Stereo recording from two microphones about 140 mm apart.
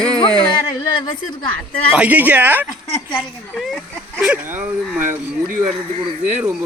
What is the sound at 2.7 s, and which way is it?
Speech, 50° left (ahead or behind).